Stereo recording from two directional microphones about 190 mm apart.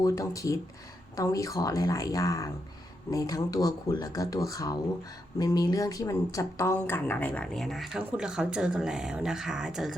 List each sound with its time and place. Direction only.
0.0 s speech: 15° left (ahead or behind); by 9.9 s 5° right (ahead or behind)